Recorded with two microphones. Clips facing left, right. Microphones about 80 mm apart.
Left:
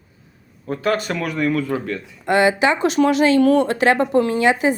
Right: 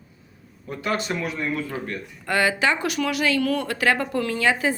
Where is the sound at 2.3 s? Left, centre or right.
Left.